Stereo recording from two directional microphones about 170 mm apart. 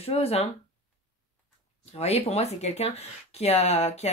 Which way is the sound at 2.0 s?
40° left (ahead or behind).